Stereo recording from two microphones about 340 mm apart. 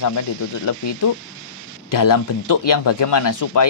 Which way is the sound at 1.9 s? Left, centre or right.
Left.